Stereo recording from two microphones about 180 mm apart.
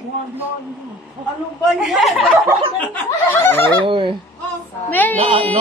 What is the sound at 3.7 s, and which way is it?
Speech, 30° right (ahead or behind).